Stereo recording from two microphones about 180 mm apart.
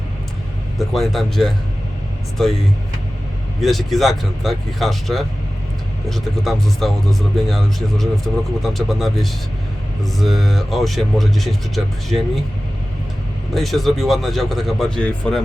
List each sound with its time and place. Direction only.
0.8 s speech: centre (ahead or behind)
3.6 s speech: centre (ahead or behind)
13.5 s speech: centre (ahead or behind)